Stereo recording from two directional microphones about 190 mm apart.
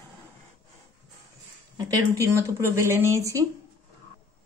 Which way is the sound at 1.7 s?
20° right (ahead or behind).